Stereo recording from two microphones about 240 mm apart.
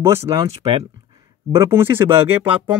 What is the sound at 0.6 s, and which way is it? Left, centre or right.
Speech, right.